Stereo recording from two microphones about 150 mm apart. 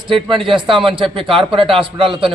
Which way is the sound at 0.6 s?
35° right (ahead or behind).